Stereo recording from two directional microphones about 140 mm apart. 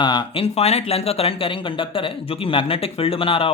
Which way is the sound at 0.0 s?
35° left (ahead or behind).